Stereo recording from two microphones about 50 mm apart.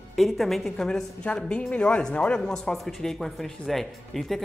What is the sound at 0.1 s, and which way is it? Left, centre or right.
Speech, centre.